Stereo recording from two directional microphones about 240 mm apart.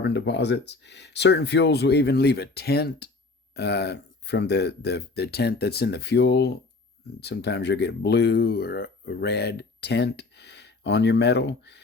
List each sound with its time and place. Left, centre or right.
0.0 s speech: left